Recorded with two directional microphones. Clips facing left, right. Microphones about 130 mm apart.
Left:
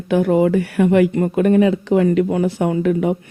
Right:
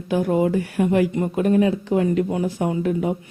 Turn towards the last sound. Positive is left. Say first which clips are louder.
# left 4 dB
turn(degrees=70)  # may be behind; listen again after turning